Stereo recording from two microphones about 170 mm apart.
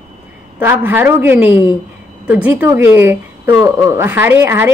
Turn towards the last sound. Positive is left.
turn(degrees=-15)  # may be behind; listen again after turning